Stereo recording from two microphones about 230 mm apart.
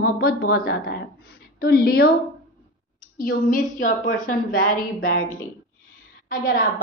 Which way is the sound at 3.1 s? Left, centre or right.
Left.